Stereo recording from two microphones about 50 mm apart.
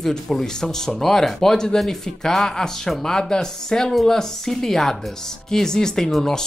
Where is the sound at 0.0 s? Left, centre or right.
Centre.